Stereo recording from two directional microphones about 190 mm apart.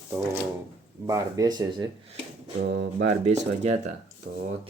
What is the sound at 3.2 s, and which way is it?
Speech, 40° right (ahead or behind).